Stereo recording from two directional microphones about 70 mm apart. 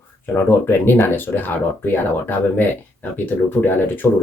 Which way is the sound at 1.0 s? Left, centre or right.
Left.